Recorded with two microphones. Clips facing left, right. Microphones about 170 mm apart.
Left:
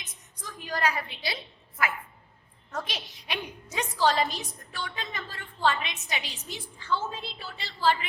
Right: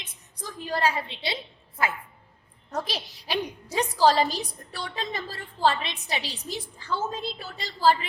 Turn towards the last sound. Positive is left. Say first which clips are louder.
# right 4 dB
turn(degrees=-40)  # may be behind; listen again after turning